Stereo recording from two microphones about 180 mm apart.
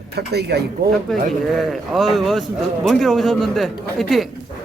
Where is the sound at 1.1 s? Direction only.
Centre (ahead or behind).